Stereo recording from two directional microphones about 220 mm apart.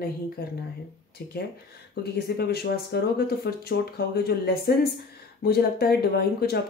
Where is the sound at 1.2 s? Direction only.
45° left (ahead or behind).